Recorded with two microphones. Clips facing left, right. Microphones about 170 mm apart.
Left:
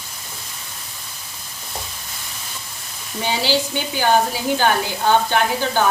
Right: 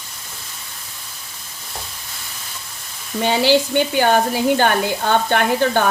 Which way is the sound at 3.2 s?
55° right (ahead or behind).